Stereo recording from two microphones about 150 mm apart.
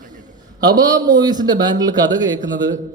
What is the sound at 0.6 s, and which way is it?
A man's voice, 25° right (ahead or behind).